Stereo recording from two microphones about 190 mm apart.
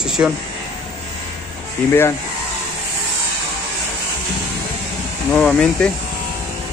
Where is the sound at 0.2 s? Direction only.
10° right (ahead or behind).